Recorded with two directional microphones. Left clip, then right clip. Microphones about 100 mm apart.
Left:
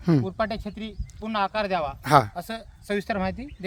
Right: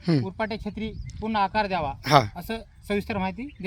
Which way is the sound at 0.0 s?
50° left (ahead or behind).